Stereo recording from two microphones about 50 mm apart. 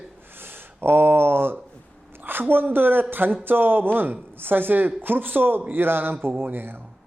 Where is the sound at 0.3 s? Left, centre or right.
Right.